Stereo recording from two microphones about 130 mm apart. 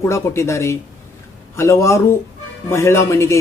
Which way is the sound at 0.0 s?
20° left (ahead or behind).